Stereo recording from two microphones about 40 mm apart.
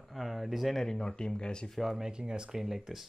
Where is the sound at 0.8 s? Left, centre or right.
Centre.